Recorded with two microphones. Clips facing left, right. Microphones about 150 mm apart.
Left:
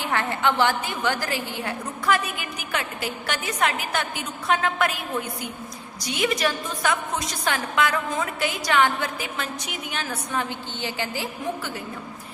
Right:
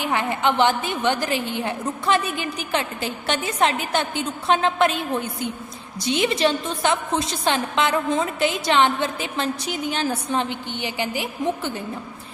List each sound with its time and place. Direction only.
0.0 s a woman's voice: 15° right (ahead or behind)